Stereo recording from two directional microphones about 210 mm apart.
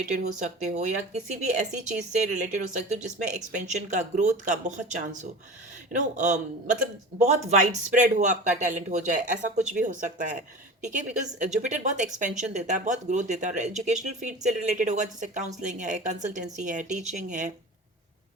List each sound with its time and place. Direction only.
0.6 s speech: 35° right (ahead or behind)